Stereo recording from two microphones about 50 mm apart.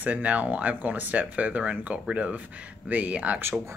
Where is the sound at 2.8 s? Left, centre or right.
Right.